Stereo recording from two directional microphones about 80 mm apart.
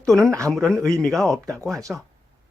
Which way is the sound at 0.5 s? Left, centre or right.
Centre.